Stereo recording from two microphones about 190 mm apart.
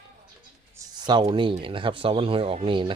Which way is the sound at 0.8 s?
20° right (ahead or behind).